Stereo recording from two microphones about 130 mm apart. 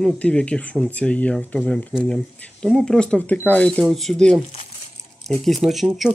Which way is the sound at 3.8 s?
Centre (ahead or behind).